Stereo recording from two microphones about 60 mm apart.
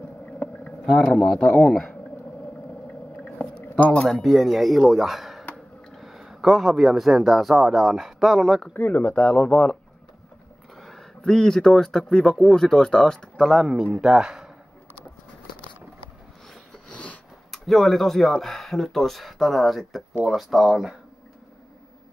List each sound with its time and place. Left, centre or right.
0.4 s boat: left
0.8 s speech: centre
1.1 s speech: centre
3.3 s a sound: left
3.9 s speech: centre
8.7 s speech: left
10.8 s speech: centre
13.4 s speech: centre
16.9 s a sound: left
17.5 s speech: centre